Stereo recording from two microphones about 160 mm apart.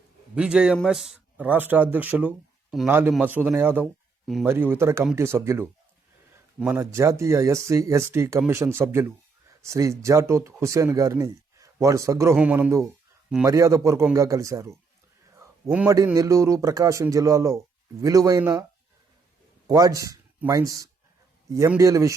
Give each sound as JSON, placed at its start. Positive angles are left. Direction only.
{"t": 0.3, "sound": "a man's voice", "side_deg": -5}
{"t": 16.1, "sound": "speech", "side_deg": -20}
{"t": 19.7, "sound": "speech", "side_deg": -25}